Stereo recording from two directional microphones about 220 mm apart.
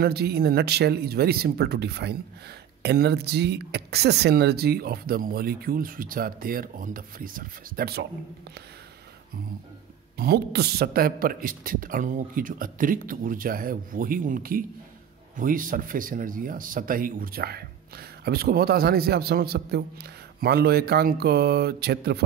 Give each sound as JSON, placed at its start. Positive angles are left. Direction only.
{"t": 0.0, "sound": "speech", "side_deg": -45}
{"t": 10.1, "sound": "speech", "side_deg": -45}